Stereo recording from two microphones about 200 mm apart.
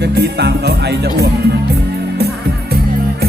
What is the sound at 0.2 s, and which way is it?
Music, 55° right (ahead or behind).